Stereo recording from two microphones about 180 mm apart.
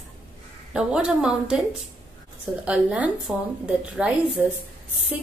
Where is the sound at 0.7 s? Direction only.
5° right (ahead or behind).